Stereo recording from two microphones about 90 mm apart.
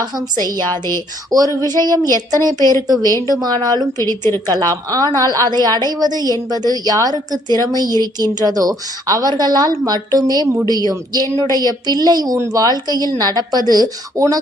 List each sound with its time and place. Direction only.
0.0 s a woman's voice: 50° right (ahead or behind)